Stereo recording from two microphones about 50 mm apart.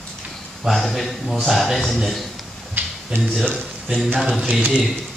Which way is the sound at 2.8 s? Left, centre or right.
Right.